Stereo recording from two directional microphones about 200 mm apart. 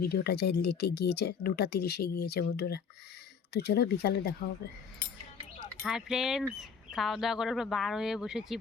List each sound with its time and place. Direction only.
0.0 s speech: 50° left (ahead or behind)
5.6 s speech: centre (ahead or behind)